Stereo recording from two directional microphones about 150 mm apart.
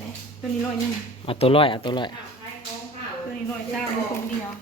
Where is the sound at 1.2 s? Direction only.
40° left (ahead or behind).